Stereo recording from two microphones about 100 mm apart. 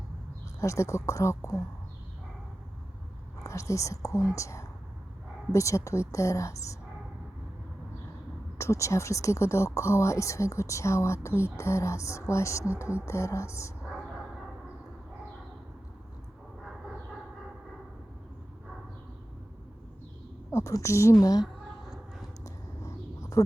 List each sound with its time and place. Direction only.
0.6 s a woman's voice: 30° left (ahead or behind)
3.4 s a woman's voice: 30° left (ahead or behind)
8.5 s speech: 30° left (ahead or behind)
20.5 s a woman's voice: 30° left (ahead or behind)
21.4 s a sound: centre (ahead or behind)
22.4 s a sound: 30° left (ahead or behind)